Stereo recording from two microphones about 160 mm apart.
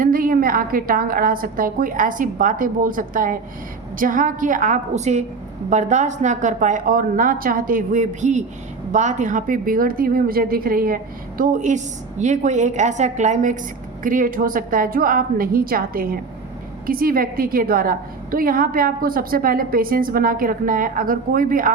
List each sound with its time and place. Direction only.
0.0 s a woman's voice: 60° right (ahead or behind)